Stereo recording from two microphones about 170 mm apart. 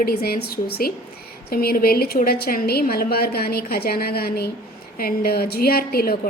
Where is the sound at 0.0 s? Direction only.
65° left (ahead or behind).